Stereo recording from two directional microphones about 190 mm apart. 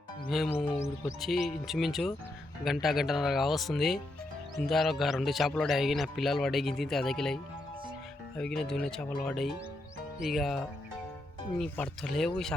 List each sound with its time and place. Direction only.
0.3 s speech: centre (ahead or behind)
0.6 s music: 35° left (ahead or behind)
1.2 s speech: centre (ahead or behind)
8.4 s speech: 5° left (ahead or behind)